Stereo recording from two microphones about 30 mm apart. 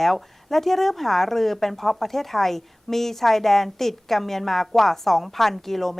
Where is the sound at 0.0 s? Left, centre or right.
Centre.